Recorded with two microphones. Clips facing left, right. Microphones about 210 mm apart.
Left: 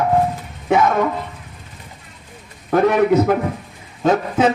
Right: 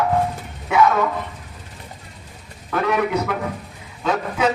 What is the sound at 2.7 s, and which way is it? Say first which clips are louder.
Speech: left 6 dB; 40° left (ahead or behind).